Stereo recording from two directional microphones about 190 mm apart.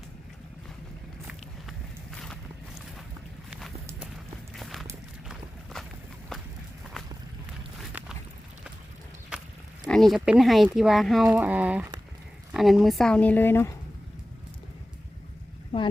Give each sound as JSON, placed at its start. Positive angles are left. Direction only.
{"t": 2.0, "sound": "walk", "side_deg": 5}
{"t": 4.5, "sound": "walk", "side_deg": 0}
{"t": 6.3, "sound": "walk", "side_deg": 0}
{"t": 7.8, "sound": "a sound", "side_deg": -5}
{"t": 9.8, "sound": "speech", "side_deg": 0}
{"t": 15.7, "sound": "a sound", "side_deg": 30}